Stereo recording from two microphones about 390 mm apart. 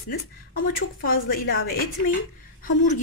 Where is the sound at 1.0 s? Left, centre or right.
Left.